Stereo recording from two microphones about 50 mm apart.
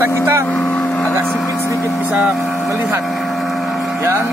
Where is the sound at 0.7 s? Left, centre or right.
Left.